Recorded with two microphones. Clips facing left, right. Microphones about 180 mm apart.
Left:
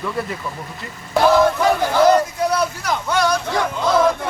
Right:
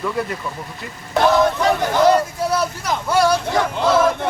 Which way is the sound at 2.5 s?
5° right (ahead or behind).